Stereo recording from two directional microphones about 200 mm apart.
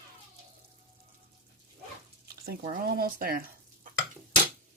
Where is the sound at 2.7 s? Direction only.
45° right (ahead or behind).